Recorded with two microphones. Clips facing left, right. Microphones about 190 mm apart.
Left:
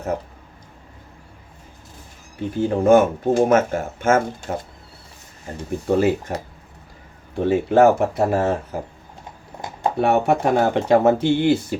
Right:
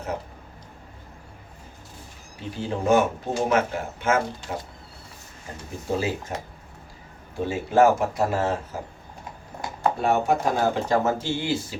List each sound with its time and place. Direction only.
2.5 s speech: 55° left (ahead or behind)
5.9 s speech: 60° left (ahead or behind)
7.3 s speech: 60° left (ahead or behind)
10.0 s speech: 65° left (ahead or behind)